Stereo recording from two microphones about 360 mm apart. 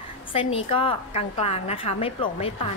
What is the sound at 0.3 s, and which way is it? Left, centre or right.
A woman's voice, centre.